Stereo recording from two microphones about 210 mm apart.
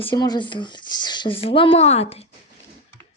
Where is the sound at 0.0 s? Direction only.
20° left (ahead or behind).